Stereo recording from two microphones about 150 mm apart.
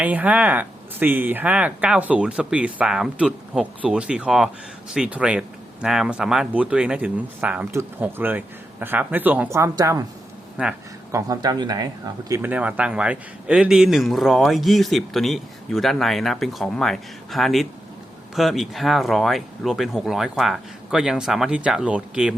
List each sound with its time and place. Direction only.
0.0 s speech: 10° right (ahead or behind)
10.6 s speech: 10° right (ahead or behind)
11.1 s speech: 25° right (ahead or behind)
12.4 s speech: 10° right (ahead or behind)